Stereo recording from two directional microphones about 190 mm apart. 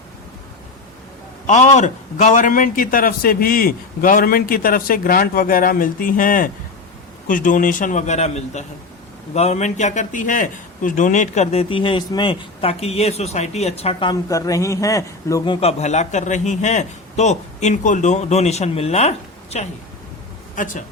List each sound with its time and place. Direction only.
1.5 s a man's voice: 40° left (ahead or behind); by 15.5 s 15° left (ahead or behind)
15.6 s a man's voice: 35° left (ahead or behind)